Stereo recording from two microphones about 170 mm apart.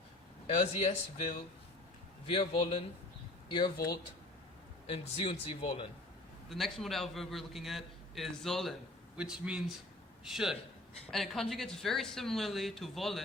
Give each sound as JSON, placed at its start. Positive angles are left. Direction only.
{"t": 0.4, "sound": "a man's voice", "side_deg": 40}
{"t": 6.5, "sound": "a man's voice", "side_deg": 0}